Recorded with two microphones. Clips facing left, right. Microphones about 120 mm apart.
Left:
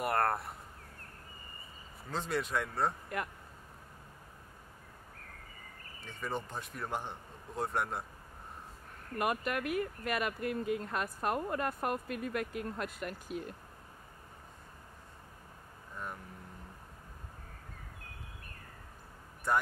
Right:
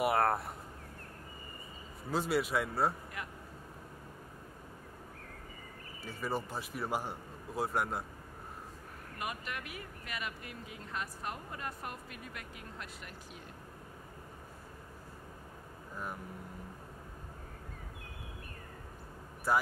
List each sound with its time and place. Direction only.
0.0 s speech: 5° right (ahead or behind)
2.0 s speech: 10° right (ahead or behind)
3.1 s speech: 50° left (ahead or behind)
6.0 s a man's voice: 5° right (ahead or behind)
9.2 s speech: 55° left (ahead or behind)
19.5 s a man's voice: 5° right (ahead or behind)